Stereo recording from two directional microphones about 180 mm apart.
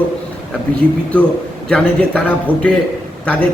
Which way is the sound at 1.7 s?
5° left (ahead or behind).